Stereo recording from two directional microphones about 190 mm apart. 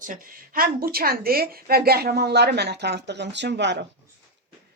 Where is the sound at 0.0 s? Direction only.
45° right (ahead or behind); by 3.8 s 65° right (ahead or behind).